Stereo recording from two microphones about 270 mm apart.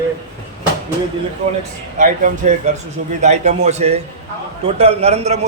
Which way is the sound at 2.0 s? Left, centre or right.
Right.